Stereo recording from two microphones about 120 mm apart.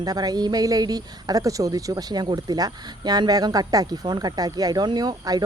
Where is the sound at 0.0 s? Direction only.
35° right (ahead or behind).